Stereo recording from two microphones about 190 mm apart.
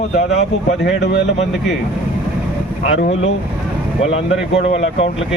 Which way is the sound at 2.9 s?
35° left (ahead or behind).